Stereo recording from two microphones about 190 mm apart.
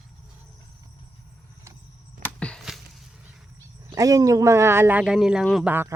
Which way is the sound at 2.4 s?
5° left (ahead or behind).